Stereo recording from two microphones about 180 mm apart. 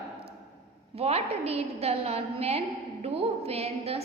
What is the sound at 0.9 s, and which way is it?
A woman's voice, 35° right (ahead or behind).